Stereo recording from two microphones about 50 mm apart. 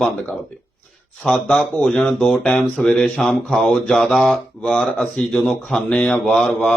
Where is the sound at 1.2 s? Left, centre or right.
Centre.